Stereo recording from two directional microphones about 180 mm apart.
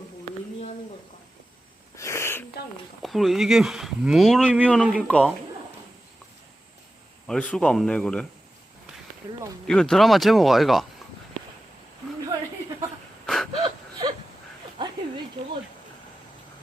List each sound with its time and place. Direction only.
2.0 s wheeze: 15° left (ahead or behind)
3.0 s speech: centre (ahead or behind)
5.0 s speech: 5° left (ahead or behind)
7.3 s speech: 5° left (ahead or behind)
9.6 s speech: 5° left (ahead or behind)
13.2 s wheeze: centre (ahead or behind)
13.6 s wail: 25° right (ahead or behind)
15.4 s a sound: 30° right (ahead or behind)